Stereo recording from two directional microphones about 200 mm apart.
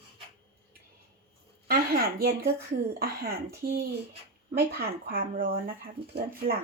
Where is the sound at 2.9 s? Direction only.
50° right (ahead or behind).